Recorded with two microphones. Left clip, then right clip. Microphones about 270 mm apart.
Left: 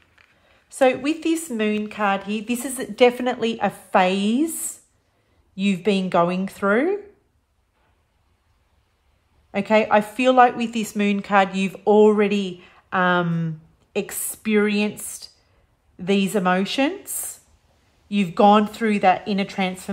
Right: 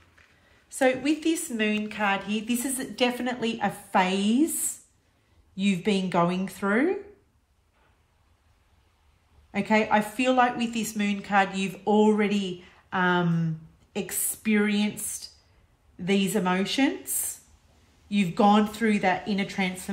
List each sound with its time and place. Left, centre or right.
0.7 s a woman's voice: centre
9.5 s a woman's voice: centre
18.0 s a woman's voice: centre